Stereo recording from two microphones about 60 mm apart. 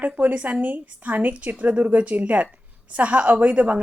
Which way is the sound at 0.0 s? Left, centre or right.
Right.